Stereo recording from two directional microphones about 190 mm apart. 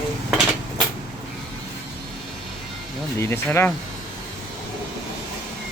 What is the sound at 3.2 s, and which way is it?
Speech, 15° left (ahead or behind).